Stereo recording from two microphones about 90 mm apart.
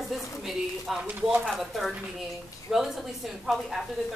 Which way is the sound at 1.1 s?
20° right (ahead or behind).